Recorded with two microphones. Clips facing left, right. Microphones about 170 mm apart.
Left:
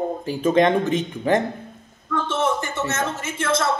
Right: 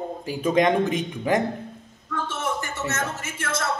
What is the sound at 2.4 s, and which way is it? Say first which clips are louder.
Speech: left 6 dB; 30° left (ahead or behind).